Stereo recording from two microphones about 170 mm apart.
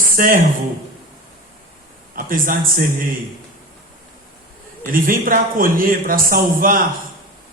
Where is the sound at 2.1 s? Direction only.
55° right (ahead or behind).